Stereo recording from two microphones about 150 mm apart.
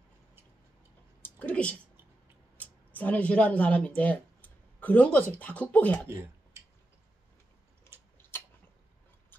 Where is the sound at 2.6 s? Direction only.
10° left (ahead or behind).